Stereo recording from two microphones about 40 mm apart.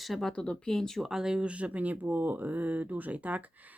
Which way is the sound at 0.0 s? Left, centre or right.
Centre.